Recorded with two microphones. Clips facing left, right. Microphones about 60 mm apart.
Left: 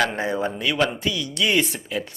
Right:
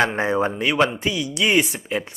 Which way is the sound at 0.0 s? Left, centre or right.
Right.